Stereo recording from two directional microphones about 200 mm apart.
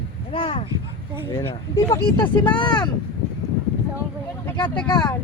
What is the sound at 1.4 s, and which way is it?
Speech, 15° left (ahead or behind).